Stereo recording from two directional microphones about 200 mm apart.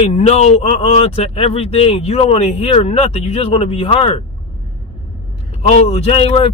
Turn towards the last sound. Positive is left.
turn(degrees=30)  # may be behind; listen again after turning